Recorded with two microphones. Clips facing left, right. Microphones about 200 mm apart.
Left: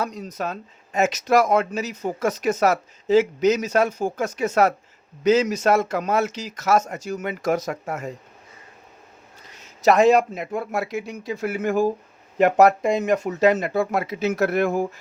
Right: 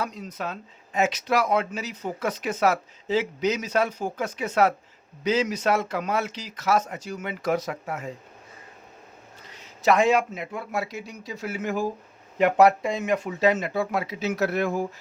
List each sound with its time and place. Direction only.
0.0 s speech: 40° left (ahead or behind)
9.8 s speech: 40° left (ahead or behind)